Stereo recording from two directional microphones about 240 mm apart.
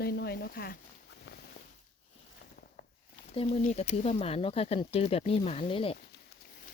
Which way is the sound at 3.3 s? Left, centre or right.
Left.